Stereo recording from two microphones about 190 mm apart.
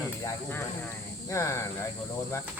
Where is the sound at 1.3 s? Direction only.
15° left (ahead or behind).